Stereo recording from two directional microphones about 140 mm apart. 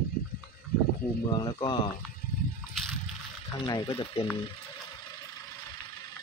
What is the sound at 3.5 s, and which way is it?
Speech, 35° left (ahead or behind).